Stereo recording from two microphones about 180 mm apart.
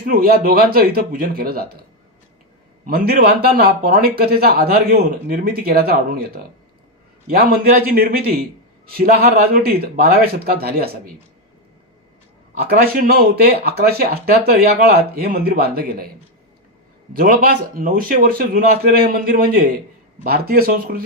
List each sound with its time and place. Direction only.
0.0 s speech: 55° right (ahead or behind)
2.8 s speech: 55° right (ahead or behind)
12.6 s speech: 55° right (ahead or behind)
17.2 s a man's voice: 50° right (ahead or behind)